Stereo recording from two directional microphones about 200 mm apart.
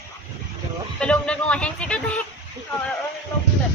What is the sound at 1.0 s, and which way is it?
Speech, 5° left (ahead or behind).